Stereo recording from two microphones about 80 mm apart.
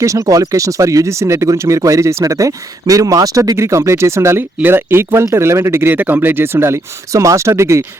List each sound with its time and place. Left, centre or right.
0.0 s speech: right
3.6 s speech: right